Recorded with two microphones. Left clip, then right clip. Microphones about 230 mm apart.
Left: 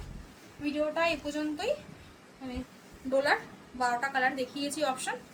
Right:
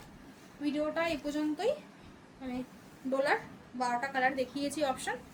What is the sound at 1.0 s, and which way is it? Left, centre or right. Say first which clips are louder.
Speech: left 3 dB; centre.